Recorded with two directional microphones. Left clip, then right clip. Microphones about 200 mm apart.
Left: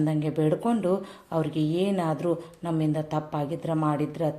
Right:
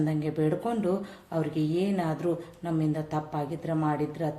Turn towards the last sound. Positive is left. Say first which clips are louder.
# left 2 dB
turn(degrees=30)  # may be behind; listen again after turning